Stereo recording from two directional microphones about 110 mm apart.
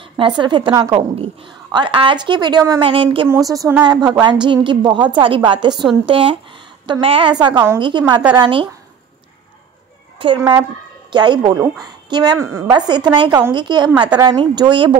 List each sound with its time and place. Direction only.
0.2 s a woman's voice: 45° right (ahead or behind)
0.8 s a woman's voice: 65° right (ahead or behind)
1.7 s a woman's voice: 45° right (ahead or behind)
2.8 s a woman's voice: 55° right (ahead or behind)
3.3 s a woman's voice: 30° right (ahead or behind)
6.0 s a woman's voice: 55° right (ahead or behind)
7.3 s a woman's voice: 45° right (ahead or behind)
8.4 s a woman's voice: 50° right (ahead or behind)
10.1 s cat: 50° right (ahead or behind)
11.1 s speech: 45° right (ahead or behind)
12.4 s a woman's voice: 25° right (ahead or behind)
12.7 s a woman's voice: 40° right (ahead or behind)